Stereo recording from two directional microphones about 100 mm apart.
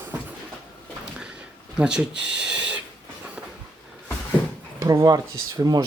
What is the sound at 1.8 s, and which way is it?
Speech, 10° right (ahead or behind).